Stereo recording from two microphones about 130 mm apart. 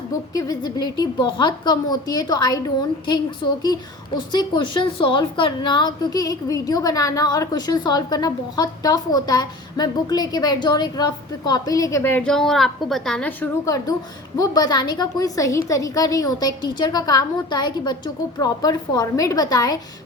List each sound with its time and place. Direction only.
0.3 s a woman's voice: 30° left (ahead or behind)
3.6 s a woman's voice: 35° left (ahead or behind); by 13.5 s 10° left (ahead or behind)
13.7 s a woman's voice: 25° left (ahead or behind)